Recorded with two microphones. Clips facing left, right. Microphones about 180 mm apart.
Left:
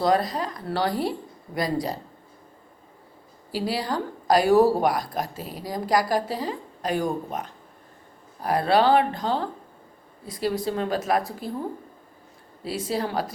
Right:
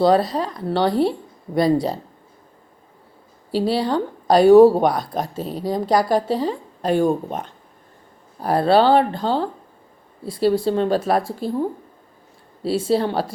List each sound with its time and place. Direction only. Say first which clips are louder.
0.0 s a woman's voice: right 6 dB; 30° right (ahead or behind)
3.5 s a woman's voice: right 7 dB; 25° right (ahead or behind)
12.6 s a woman's voice: right 8 dB; 30° right (ahead or behind)